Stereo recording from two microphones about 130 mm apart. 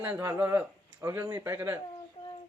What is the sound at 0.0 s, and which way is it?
Speech, 15° right (ahead or behind).